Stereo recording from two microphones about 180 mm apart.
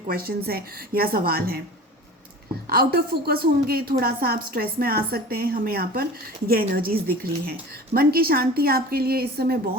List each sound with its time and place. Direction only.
0.1 s a woman's voice: 55° right (ahead or behind)
2.6 s a woman's voice: 55° right (ahead or behind)